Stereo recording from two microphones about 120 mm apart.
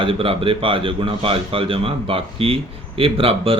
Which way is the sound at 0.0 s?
50° right (ahead or behind).